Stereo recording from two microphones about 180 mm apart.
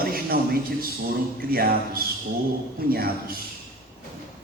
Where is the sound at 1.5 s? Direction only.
55° right (ahead or behind).